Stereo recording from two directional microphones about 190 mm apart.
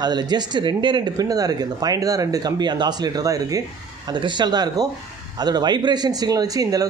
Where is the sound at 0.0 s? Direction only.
20° right (ahead or behind).